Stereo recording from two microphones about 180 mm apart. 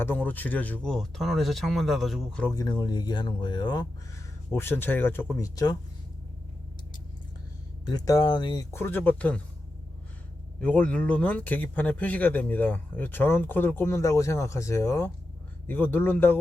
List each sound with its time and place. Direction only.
0.0 s speech: 10° left (ahead or behind)
2.6 s speech: 25° left (ahead or behind)
4.5 s speech: 15° left (ahead or behind)
7.9 s speech: 20° left (ahead or behind)
8.7 s speech: 10° left (ahead or behind)
10.6 s speech: 5° left (ahead or behind)